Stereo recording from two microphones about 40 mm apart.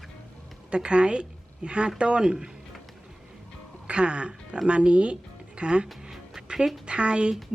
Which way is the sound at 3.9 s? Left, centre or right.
Right.